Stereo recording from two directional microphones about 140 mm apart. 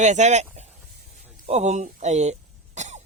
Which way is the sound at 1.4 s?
50° right (ahead or behind).